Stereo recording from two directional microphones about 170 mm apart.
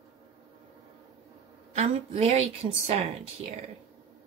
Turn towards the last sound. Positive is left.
turn(degrees=-40)  # may be behind; listen again after turning